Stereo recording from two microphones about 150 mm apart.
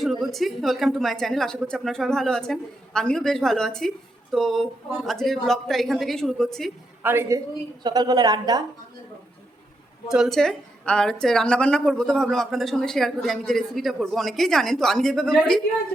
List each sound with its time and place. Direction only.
0.0 s a woman's voice: centre (ahead or behind)
7.0 s a woman's voice: 15° right (ahead or behind)
10.1 s a woman's voice: centre (ahead or behind)